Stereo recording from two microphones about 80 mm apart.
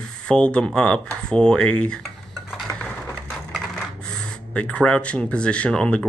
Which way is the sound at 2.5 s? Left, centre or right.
Centre.